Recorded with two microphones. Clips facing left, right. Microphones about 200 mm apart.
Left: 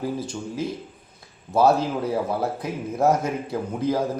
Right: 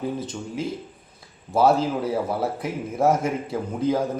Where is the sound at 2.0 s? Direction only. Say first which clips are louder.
Even; 5° right (ahead or behind).